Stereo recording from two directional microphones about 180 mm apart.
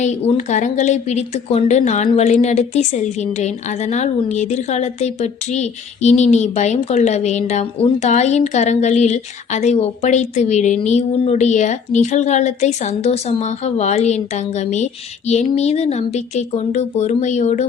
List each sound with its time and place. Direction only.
0.0 s a woman's voice: 35° left (ahead or behind)
15.3 s a woman's voice: 35° left (ahead or behind)